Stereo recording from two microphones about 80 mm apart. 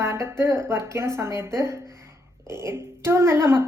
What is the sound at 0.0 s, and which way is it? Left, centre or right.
A woman's voice, right.